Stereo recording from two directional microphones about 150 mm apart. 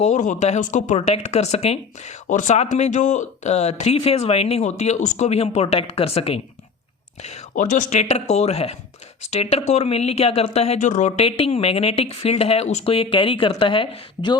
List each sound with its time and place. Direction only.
0.0 s speech: 50° left (ahead or behind)
7.5 s speech: 60° left (ahead or behind)
11.2 s speech: 40° left (ahead or behind)